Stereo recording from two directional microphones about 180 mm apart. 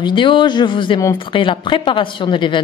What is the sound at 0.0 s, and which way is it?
Speech, 25° left (ahead or behind).